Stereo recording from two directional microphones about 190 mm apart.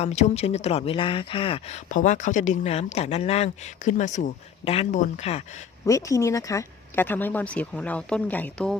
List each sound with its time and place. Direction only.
0.0 s speech: 35° left (ahead or behind)
5.8 s speech: 15° left (ahead or behind)